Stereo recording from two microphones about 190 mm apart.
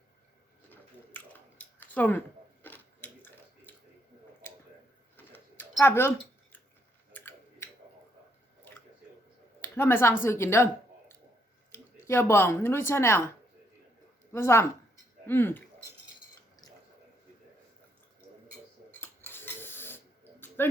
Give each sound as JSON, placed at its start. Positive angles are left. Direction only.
{"t": 0.7, "sound": "a sound", "side_deg": 10}
{"t": 5.1, "sound": "a sound", "side_deg": 10}
{"t": 7.1, "sound": "tick-tock", "side_deg": 10}
{"t": 9.7, "sound": "speech", "side_deg": 10}
{"t": 11.7, "sound": "speech", "side_deg": 15}
{"t": 14.3, "sound": "speech", "side_deg": 15}
{"t": 18.9, "sound": "dishes", "side_deg": 10}
{"t": 20.6, "sound": "speech", "side_deg": 10}